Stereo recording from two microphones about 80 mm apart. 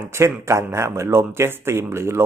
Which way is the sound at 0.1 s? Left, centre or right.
Right.